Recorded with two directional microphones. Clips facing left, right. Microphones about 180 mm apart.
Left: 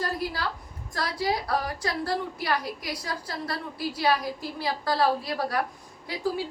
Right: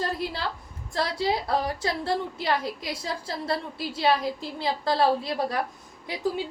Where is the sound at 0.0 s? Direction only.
25° right (ahead or behind).